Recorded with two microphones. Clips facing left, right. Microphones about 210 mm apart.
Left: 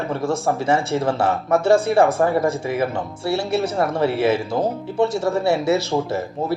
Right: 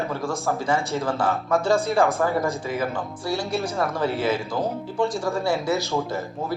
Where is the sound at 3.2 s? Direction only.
65° left (ahead or behind).